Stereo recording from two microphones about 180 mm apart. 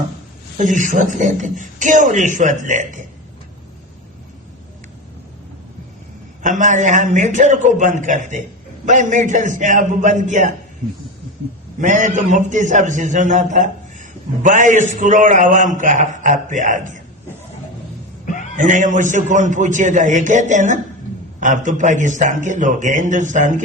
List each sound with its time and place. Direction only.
0.6 s a man's voice: 45° right (ahead or behind)
6.4 s a man's voice: 45° right (ahead or behind)
11.8 s a man's voice: 45° right (ahead or behind)
18.3 s a sound: 45° left (ahead or behind)
18.5 s a man's voice: 45° right (ahead or behind)